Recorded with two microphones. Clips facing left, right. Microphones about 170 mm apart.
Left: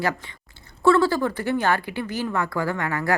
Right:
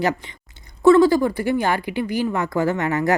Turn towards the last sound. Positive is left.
turn(degrees=-20)  # may be behind; listen again after turning